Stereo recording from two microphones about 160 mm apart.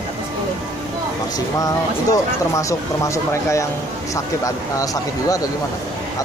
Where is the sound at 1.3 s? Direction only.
20° left (ahead or behind).